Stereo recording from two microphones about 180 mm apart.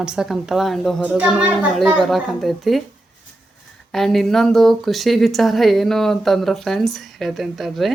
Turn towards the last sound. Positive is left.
turn(degrees=0)  # may be behind; listen again after turning